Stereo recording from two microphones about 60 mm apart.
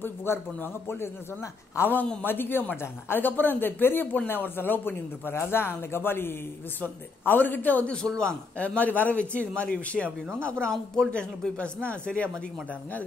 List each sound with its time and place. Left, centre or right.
0.0 s a man's voice: left
7.9 s a man's voice: centre